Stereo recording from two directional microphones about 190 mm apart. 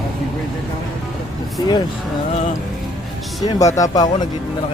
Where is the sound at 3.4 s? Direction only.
15° left (ahead or behind).